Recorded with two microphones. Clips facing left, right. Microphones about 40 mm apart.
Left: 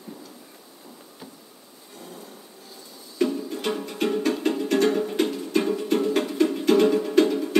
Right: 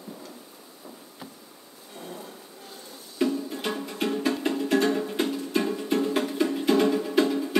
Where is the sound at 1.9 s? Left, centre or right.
Right.